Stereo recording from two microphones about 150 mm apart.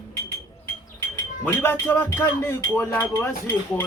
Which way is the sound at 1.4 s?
15° left (ahead or behind).